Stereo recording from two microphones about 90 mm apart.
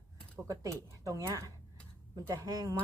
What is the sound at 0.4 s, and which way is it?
Speech, 40° right (ahead or behind).